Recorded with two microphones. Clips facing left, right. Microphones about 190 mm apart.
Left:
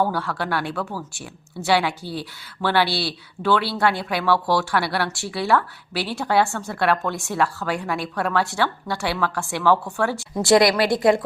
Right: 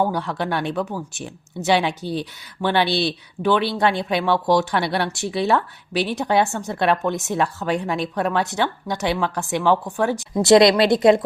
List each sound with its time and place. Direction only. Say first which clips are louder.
0.0 s speech: right 1 dB; 20° right (ahead or behind)